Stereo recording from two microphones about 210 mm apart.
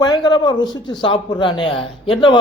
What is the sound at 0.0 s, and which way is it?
A man's voice, 20° left (ahead or behind).